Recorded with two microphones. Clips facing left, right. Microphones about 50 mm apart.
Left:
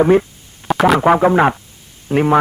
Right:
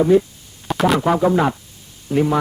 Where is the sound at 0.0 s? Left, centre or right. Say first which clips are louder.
Left 2 dB; left.